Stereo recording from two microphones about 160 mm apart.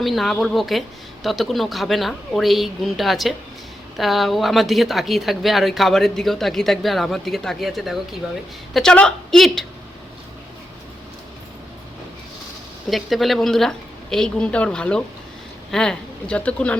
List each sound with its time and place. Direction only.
0.0 s speech: centre (ahead or behind)
12.9 s speech: centre (ahead or behind)